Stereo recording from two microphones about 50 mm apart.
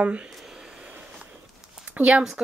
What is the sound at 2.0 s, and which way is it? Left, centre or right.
Speech, right.